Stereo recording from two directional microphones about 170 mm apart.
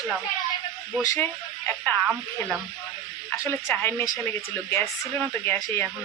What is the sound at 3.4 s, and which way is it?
A woman's voice, 15° left (ahead or behind).